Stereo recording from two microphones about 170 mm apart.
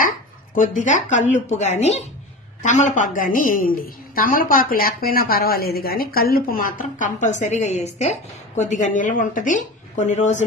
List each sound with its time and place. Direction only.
0.6 s a woman's voice: 45° left (ahead or behind)